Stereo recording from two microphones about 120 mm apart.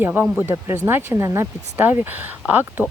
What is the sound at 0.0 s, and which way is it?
Speech, 15° right (ahead or behind).